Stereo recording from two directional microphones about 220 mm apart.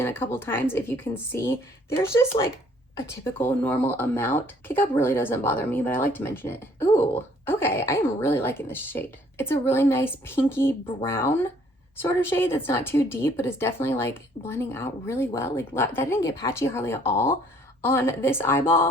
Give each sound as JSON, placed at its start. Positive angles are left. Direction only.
{"t": 0.0, "sound": "a woman's voice", "side_deg": 10}
{"t": 3.2, "sound": "a woman's voice", "side_deg": 10}